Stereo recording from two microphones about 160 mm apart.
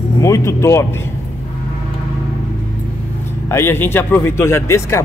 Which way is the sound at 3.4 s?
15° left (ahead or behind).